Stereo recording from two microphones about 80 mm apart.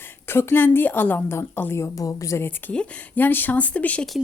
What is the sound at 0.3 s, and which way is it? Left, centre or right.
A woman's voice, left.